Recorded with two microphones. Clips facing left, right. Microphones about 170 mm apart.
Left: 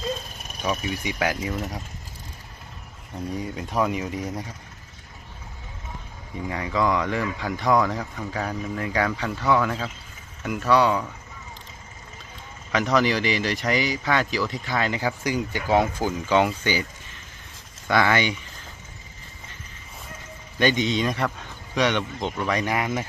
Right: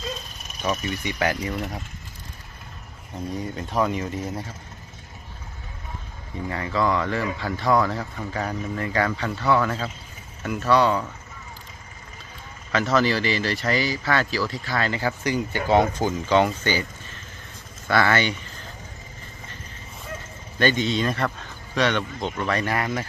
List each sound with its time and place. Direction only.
0.6 s speech: 10° left (ahead or behind)
1.5 s speech: 5° right (ahead or behind)
3.3 s speech: 10° left (ahead or behind)
6.5 s speech: 10° left (ahead or behind)
7.7 s speech: centre (ahead or behind)
12.7 s speech: 15° left (ahead or behind)
17.8 s speech: 15° left (ahead or behind)
20.6 s speech: 15° left (ahead or behind)